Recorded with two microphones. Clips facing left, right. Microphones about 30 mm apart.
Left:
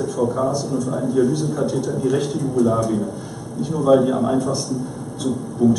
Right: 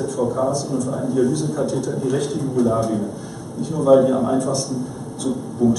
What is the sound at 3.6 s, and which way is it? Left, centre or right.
A man's voice, centre.